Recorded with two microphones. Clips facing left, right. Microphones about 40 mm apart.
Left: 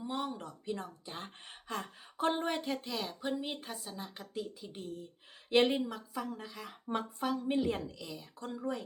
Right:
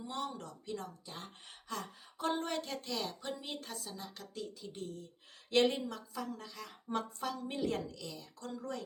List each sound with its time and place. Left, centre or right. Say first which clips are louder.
0.0 s speech: left 3 dB; centre